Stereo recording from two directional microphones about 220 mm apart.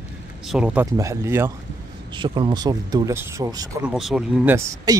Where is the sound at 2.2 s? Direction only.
20° right (ahead or behind).